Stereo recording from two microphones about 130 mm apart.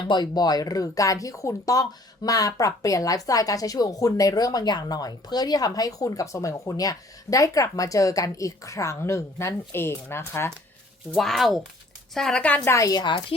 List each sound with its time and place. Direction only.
0.1 s speech: 30° left (ahead or behind)
11.2 s a woman's voice: centre (ahead or behind)
12.6 s speech: 25° left (ahead or behind)